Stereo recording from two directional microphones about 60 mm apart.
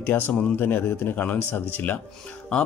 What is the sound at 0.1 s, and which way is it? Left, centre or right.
Speech, left.